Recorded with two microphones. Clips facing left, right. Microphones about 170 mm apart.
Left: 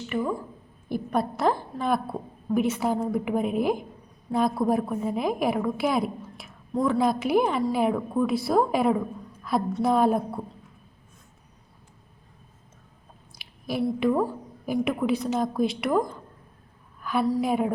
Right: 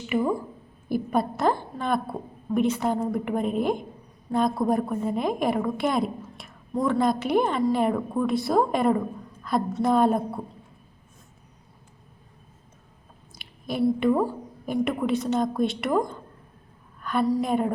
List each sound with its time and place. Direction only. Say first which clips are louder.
0.1 s a sound: right 4 dB; 10° right (ahead or behind)
0.9 s a woman's voice: right 2 dB; 5° right (ahead or behind)
13.3 s a woman's voice: even; centre (ahead or behind)